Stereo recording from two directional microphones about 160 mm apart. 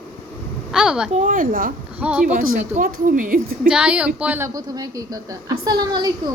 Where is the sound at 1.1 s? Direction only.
55° right (ahead or behind).